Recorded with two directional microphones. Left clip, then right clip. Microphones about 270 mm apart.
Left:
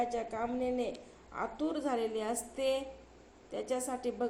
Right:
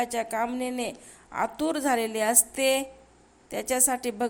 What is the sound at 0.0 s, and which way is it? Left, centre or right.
A woman's voice, right.